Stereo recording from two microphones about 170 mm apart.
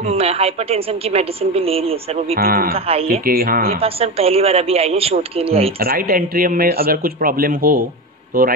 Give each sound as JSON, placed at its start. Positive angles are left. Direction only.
{"t": 0.0, "sound": "a woman's voice", "side_deg": -35}
{"t": 2.3, "sound": "a man's voice", "side_deg": -60}
{"t": 3.8, "sound": "a woman's voice", "side_deg": -35}
{"t": 5.8, "sound": "a man's voice", "side_deg": -60}